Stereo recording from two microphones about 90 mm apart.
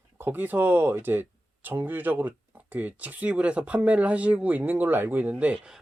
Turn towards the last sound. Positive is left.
turn(degrees=-15)  # may be behind; listen again after turning